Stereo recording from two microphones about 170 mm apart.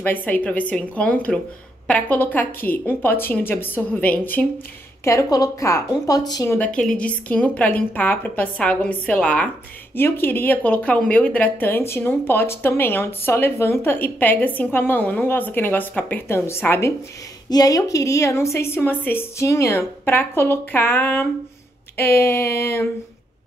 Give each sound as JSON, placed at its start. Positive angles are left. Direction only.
{"t": 0.0, "sound": "speech", "side_deg": 10}
{"t": 5.0, "sound": "speech", "side_deg": 20}